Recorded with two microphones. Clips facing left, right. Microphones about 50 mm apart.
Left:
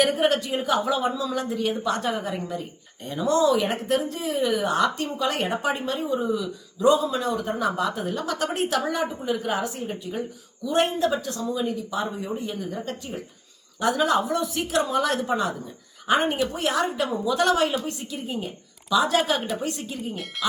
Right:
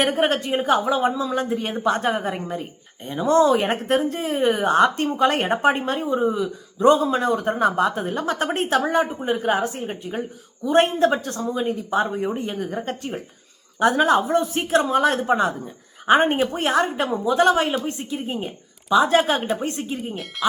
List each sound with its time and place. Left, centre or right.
0.0 s a woman's voice: right
0.9 s a woman's voice: right
3.0 s speech: right
3.3 s a woman's voice: right